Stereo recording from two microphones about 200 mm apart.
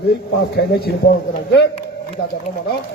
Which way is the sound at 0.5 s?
50° left (ahead or behind).